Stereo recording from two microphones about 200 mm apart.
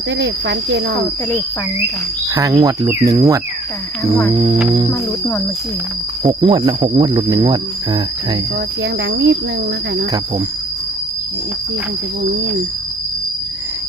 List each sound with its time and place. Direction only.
0.2 s speech: 60° right (ahead or behind)
2.3 s cricket: 15° right (ahead or behind)
4.3 s speech: 20° right (ahead or behind)
4.9 s speech: 10° left (ahead or behind)
6.2 s speech: 25° right (ahead or behind)
8.8 s speech: 60° right (ahead or behind)